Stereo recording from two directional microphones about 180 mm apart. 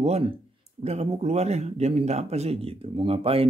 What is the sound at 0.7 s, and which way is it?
Speech, 35° right (ahead or behind).